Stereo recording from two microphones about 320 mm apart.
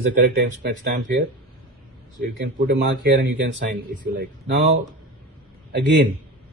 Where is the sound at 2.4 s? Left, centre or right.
Right.